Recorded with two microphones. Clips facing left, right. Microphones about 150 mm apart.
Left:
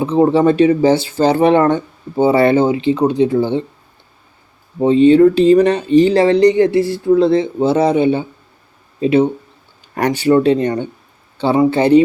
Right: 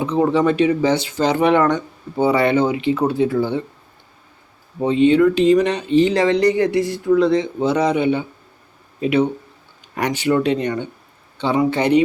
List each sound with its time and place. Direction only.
0.0 s speech: 30° left (ahead or behind)
4.8 s speech: 35° left (ahead or behind)
9.9 s speech: 40° left (ahead or behind)